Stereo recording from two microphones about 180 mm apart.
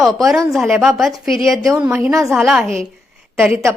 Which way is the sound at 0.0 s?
Centre (ahead or behind).